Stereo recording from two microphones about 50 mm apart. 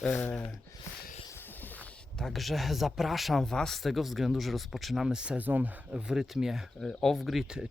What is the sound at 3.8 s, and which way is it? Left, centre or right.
Speech, centre.